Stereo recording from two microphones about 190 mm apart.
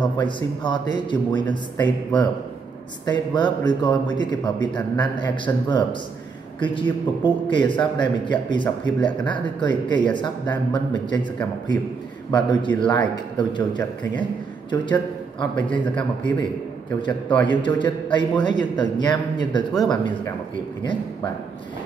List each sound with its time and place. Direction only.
0.0 s a man's voice: 25° left (ahead or behind)
12.3 s a man's voice: 25° left (ahead or behind)
14.7 s a man's voice: 25° left (ahead or behind)
15.8 s a man's voice: 5° left (ahead or behind)
17.5 s a man's voice: 25° left (ahead or behind)